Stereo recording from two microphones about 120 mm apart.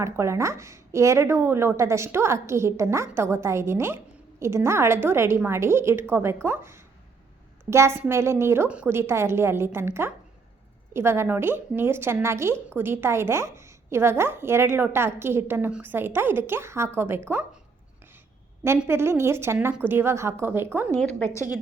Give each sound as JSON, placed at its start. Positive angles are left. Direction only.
{"t": 0.0, "sound": "a woman's voice", "side_deg": -25}
{"t": 18.9, "sound": "a woman's voice", "side_deg": -20}
{"t": 21.0, "sound": "a woman's voice", "side_deg": 10}